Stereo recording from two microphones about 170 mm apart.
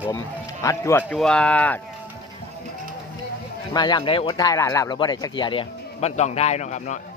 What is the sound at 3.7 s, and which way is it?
Speech, 25° left (ahead or behind).